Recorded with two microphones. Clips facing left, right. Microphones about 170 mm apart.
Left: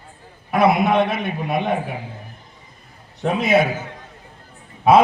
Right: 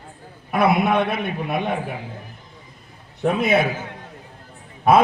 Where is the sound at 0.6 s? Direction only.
55° right (ahead or behind).